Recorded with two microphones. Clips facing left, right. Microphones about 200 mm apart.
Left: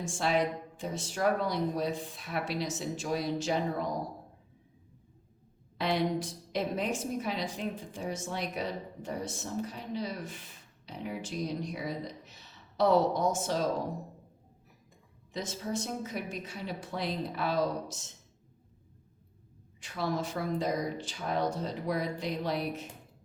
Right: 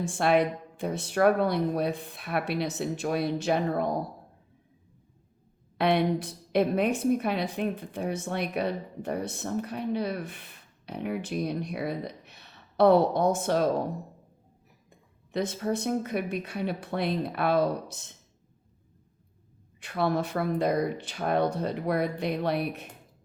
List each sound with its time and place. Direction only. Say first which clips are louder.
0.0 s a woman's voice: right 5 dB; 60° right (ahead or behind)
5.7 s a woman's voice: right 5 dB; 60° right (ahead or behind)
15.3 s a woman's voice: right 7 dB; 60° right (ahead or behind)
19.8 s a woman's voice: right 6 dB; 60° right (ahead or behind)